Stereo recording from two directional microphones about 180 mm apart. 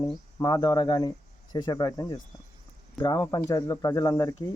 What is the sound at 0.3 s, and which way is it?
Speech, 20° left (ahead or behind).